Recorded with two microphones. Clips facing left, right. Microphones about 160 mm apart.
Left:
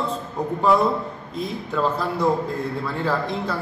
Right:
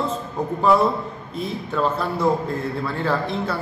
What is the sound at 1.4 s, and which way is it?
A man's voice, centre (ahead or behind).